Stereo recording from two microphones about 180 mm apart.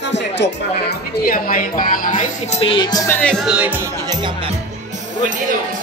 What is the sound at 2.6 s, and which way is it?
Speech, 25° left (ahead or behind).